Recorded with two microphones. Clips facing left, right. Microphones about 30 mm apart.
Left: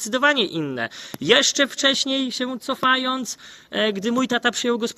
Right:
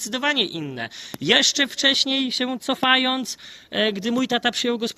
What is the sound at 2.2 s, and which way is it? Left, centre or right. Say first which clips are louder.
Speech: right 2 dB; right.